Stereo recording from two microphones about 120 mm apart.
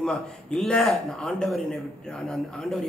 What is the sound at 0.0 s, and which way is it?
Speech, 5° left (ahead or behind).